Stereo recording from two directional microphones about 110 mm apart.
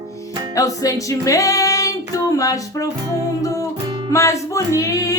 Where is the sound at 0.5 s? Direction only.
30° left (ahead or behind).